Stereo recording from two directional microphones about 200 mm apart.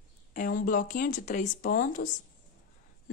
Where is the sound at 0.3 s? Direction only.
45° left (ahead or behind).